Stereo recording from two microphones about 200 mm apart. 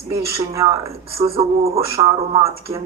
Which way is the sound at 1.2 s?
30° right (ahead or behind).